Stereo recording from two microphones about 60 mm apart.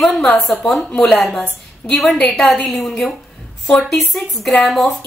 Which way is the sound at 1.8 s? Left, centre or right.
Left.